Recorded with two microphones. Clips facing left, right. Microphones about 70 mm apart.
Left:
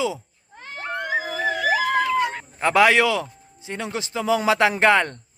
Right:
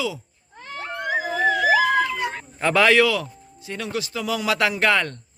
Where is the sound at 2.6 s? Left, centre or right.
Centre.